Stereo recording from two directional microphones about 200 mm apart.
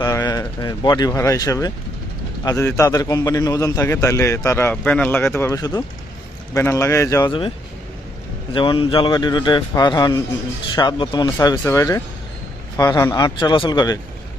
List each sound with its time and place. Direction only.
0.0 s a man's voice: 20° left (ahead or behind)
8.5 s a man's voice: 25° left (ahead or behind)